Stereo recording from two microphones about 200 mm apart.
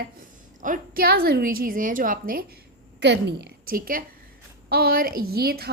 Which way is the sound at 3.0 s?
60° right (ahead or behind).